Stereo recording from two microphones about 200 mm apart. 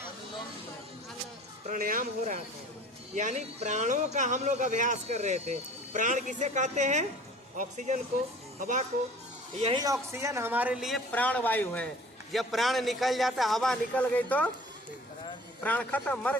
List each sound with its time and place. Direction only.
1.6 s speech: 45° right (ahead or behind)
9.6 s speech: 30° right (ahead or behind)
9.8 s a man's voice: 15° right (ahead or behind); by 14.5 s 10° left (ahead or behind)
15.6 s a man's voice: 10° left (ahead or behind)